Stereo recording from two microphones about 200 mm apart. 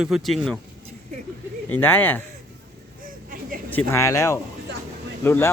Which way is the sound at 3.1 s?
45° right (ahead or behind).